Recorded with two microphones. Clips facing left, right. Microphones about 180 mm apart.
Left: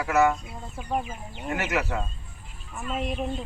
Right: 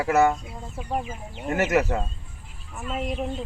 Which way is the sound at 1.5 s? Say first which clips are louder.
Right 6 dB; 45° right (ahead or behind).